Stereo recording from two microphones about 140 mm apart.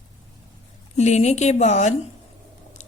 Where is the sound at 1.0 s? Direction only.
55° left (ahead or behind).